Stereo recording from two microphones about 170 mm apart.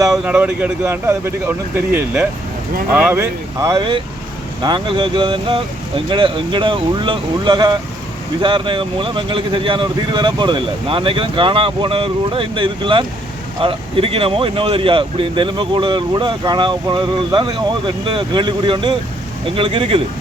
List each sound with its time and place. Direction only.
0.1 s speech: 5° right (ahead or behind); by 20.0 s 30° right (ahead or behind)